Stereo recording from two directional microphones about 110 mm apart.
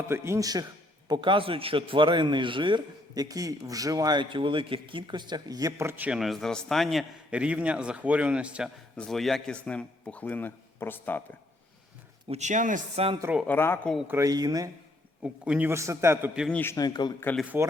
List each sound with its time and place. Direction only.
0.1 s a man's voice: 25° right (ahead or behind)
1.0 s a man's voice: 45° right (ahead or behind); by 6.1 s 20° right (ahead or behind)
6.1 s a man's voice: centre (ahead or behind)
7.3 s a man's voice: 10° right (ahead or behind)
9.0 s a man's voice: 5° left (ahead or behind)
12.3 s speech: 90° right
13.0 s speech: 70° right (ahead or behind)
13.5 s speech: 20° left (ahead or behind)
14.3 s speech: 35° right (ahead or behind)
15.2 s a man's voice: 10° right (ahead or behind)
15.7 s a man's voice: 25° right (ahead or behind)
16.5 s a man's voice: 15° left (ahead or behind)
16.7 s a man's voice: 40° left (ahead or behind)
17.5 s a man's voice: 20° right (ahead or behind)